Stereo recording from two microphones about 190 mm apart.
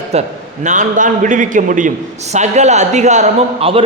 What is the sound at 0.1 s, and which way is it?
A man's voice, 35° right (ahead or behind).